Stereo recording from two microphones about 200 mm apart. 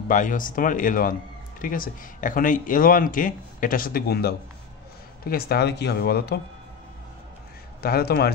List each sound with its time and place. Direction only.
0.1 s speech: 40° left (ahead or behind)
7.8 s speech: 50° left (ahead or behind)